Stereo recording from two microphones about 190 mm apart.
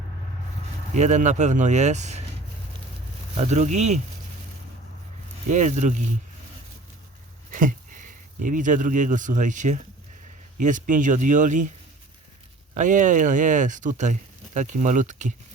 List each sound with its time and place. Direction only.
0.9 s speech: 40° right (ahead or behind)
3.3 s speech: 35° right (ahead or behind)
5.5 s speech: 40° right (ahead or behind)
7.5 s speech: 45° right (ahead or behind)
12.7 s speech: 40° right (ahead or behind)